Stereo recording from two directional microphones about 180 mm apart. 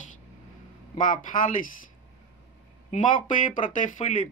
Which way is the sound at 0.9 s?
45° left (ahead or behind).